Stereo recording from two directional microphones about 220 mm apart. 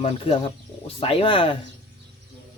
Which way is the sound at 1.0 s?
25° left (ahead or behind).